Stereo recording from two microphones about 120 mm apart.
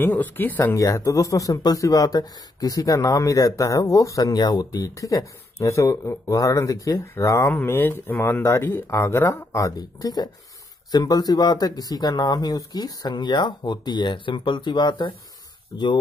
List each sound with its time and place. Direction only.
0.0 s speech: 15° left (ahead or behind); by 15.9 s 35° left (ahead or behind)